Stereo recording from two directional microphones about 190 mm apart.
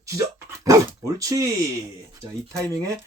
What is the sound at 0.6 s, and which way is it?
Dog, 20° right (ahead or behind).